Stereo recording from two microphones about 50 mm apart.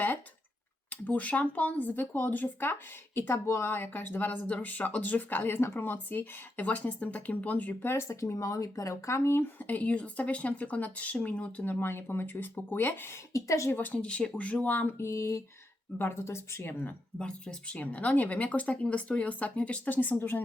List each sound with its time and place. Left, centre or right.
0.9 s speech: left
3.2 s speech: left
3.7 s speech: left
7.8 s speech: left
8.0 s speech: left
9.4 s speech: left
11.6 s speech: left
13.3 s speech: left
13.7 s speech: left
14.0 s speech: centre; by 14.9 s left
14.9 s speech: left
16.0 s speech: left
17.2 s speech: centre; by 20.4 s left